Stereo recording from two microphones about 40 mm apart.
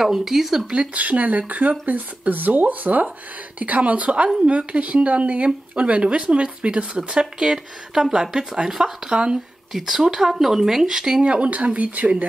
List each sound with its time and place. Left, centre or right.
0.0 s speech: centre
0.9 s speech: right; by 9.1 s centre
9.1 s speech: right
9.7 s speech: centre
11.2 s speech: right